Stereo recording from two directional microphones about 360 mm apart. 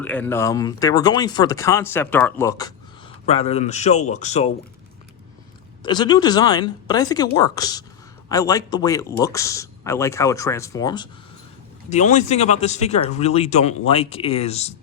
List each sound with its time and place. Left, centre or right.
0.0 s speech: centre
5.8 s speech: centre